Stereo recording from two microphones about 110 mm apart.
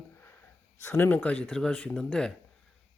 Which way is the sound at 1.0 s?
15° left (ahead or behind).